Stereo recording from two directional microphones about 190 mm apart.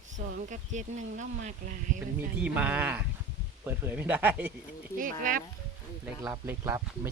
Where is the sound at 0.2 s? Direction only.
40° right (ahead or behind).